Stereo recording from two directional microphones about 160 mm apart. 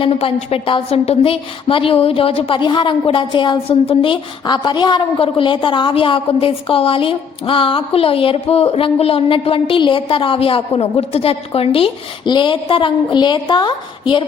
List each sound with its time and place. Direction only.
0.0 s a woman's voice: 40° left (ahead or behind)